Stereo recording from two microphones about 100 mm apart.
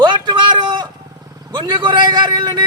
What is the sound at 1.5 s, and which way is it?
Vehicle, 45° right (ahead or behind).